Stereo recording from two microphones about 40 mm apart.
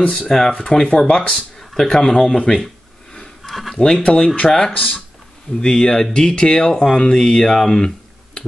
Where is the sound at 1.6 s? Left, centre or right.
Centre.